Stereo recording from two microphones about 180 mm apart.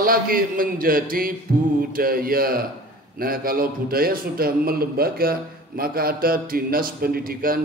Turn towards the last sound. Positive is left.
turn(degrees=-55)  # may be behind; listen again after turning